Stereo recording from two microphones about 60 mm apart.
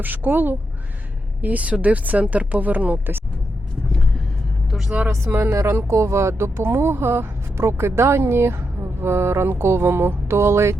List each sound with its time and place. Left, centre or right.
0.0 s speech: right
5.0 s speech: right